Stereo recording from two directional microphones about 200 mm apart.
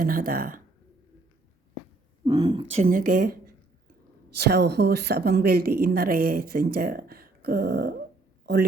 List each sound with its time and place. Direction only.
0.0 s a woman's voice: 45° right (ahead or behind)
2.2 s speech: 20° right (ahead or behind)
2.7 s a woman's voice: 45° right (ahead or behind)